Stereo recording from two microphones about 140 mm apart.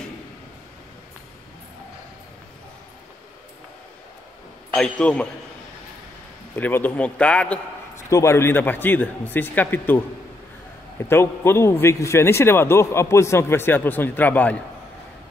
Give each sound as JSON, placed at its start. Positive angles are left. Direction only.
{"t": 4.7, "sound": "a man's voice", "side_deg": 5}
{"t": 6.5, "sound": "a man's voice", "side_deg": 15}
{"t": 7.9, "sound": "a man's voice", "side_deg": 20}